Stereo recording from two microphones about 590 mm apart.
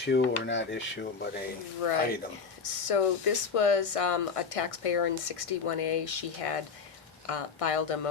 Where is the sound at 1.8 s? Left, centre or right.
Left.